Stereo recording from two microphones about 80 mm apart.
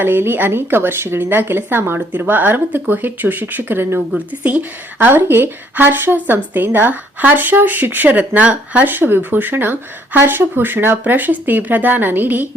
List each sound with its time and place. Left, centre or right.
0.0 s a woman's voice: right